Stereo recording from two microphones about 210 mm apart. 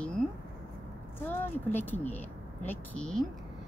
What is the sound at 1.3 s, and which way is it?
Speech, 10° left (ahead or behind).